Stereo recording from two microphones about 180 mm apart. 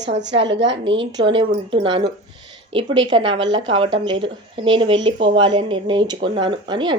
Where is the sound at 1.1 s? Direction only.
25° right (ahead or behind).